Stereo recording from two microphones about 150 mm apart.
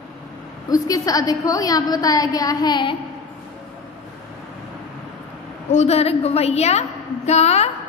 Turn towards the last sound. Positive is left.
turn(degrees=45)  # may be behind; listen again after turning